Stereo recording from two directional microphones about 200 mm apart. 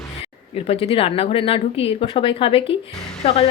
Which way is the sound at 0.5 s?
30° left (ahead or behind).